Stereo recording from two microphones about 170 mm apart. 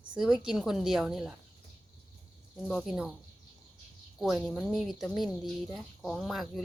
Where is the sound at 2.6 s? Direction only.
Centre (ahead or behind).